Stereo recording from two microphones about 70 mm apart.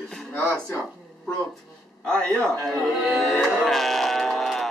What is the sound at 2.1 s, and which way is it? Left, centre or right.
Speech, centre.